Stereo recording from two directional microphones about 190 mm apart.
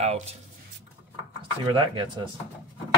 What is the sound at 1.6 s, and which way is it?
Speech, 25° right (ahead or behind).